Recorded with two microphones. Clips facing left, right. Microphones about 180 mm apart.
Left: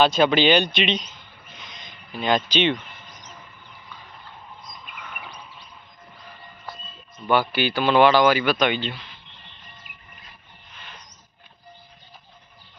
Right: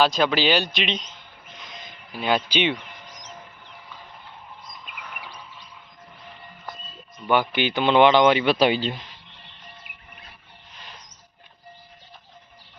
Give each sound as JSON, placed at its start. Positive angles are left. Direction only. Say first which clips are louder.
{"t": 0.0, "sound": "speech", "louder": "left 3 dB", "side_deg": 0}
{"t": 1.6, "sound": "a sound", "louder": "right 4 dB", "side_deg": -5}
{"t": 2.7, "sound": "bird", "louder": "even", "side_deg": -85}
{"t": 7.3, "sound": "speech", "louder": "even", "side_deg": -15}